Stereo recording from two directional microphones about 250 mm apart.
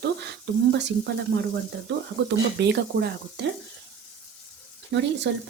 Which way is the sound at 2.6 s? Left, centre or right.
Right.